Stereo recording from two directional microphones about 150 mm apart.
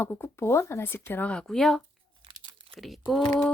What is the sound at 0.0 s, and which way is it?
Speech, 15° left (ahead or behind).